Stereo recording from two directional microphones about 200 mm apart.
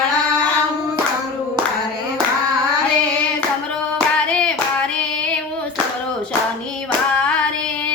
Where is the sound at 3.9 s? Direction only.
5° left (ahead or behind).